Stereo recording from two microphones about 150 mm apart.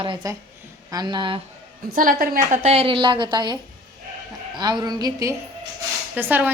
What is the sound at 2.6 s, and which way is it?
A woman's voice, 40° right (ahead or behind).